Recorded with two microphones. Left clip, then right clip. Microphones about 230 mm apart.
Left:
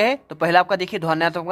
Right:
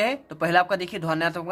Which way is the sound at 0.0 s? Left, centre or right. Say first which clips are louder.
Left 5 dB; left.